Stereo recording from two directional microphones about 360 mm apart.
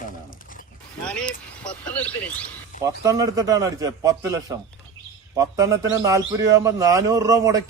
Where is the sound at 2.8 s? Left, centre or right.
Centre.